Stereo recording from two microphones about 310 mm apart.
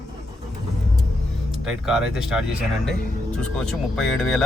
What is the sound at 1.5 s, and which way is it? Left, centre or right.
Speech, centre.